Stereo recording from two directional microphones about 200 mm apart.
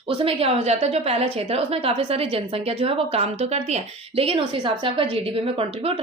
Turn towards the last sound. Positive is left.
turn(degrees=-30)  # may be behind; listen again after turning